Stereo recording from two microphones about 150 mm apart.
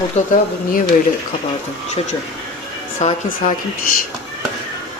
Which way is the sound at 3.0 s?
50° left (ahead or behind).